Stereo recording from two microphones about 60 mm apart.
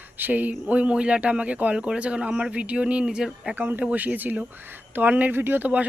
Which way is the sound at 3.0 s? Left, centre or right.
Centre.